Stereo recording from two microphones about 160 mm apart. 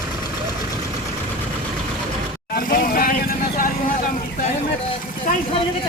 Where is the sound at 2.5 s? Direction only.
65° left (ahead or behind).